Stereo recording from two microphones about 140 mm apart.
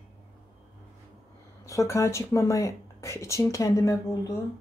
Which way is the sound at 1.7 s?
20° left (ahead or behind).